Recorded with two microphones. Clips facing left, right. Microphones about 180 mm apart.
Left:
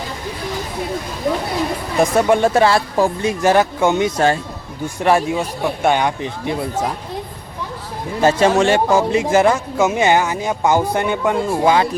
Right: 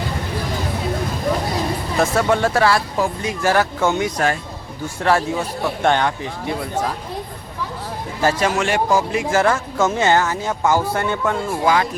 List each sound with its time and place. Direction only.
2.0 s speech: 15° left (ahead or behind)
8.2 s speech: 25° left (ahead or behind)